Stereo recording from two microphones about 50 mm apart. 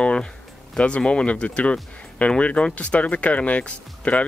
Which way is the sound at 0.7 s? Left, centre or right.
Left.